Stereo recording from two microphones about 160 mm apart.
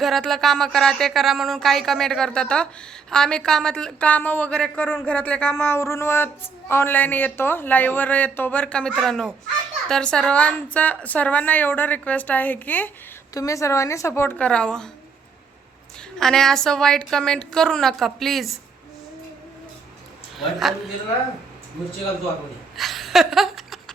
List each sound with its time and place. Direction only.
0.0 s a woman's voice: centre (ahead or behind)
16.1 s speech: 5° left (ahead or behind)
20.4 s speech: centre (ahead or behind)
22.8 s laughter: centre (ahead or behind)